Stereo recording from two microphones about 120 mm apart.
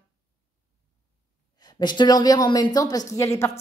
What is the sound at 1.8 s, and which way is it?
A woman's voice, 40° left (ahead or behind).